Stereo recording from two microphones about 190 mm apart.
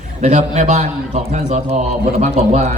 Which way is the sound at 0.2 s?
40° right (ahead or behind).